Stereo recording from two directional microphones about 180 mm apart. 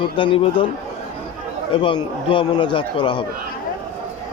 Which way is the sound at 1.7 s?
30° left (ahead or behind).